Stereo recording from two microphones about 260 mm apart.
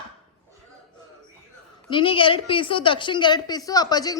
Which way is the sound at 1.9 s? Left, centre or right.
Centre.